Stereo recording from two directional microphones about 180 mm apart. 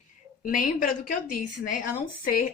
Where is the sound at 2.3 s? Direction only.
50° left (ahead or behind).